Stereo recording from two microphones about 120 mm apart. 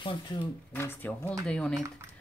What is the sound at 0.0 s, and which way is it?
Speech, 40° left (ahead or behind).